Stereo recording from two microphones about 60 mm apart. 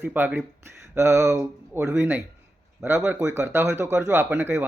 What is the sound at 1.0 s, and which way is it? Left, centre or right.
Speech, right.